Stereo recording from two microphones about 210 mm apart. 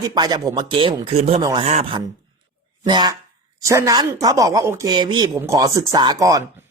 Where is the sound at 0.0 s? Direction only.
20° right (ahead or behind).